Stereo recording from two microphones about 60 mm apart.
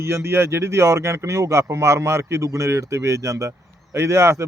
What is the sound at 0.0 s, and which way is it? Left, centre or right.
Speech, right.